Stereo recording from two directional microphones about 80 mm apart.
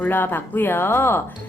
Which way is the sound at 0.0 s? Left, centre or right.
Left.